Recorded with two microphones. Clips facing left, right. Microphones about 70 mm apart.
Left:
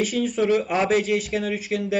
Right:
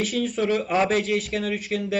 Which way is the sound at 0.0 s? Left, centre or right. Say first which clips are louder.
Left 2 dB; centre.